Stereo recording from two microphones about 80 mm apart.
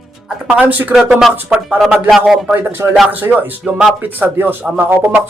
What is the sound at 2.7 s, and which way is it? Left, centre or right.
Speech, right.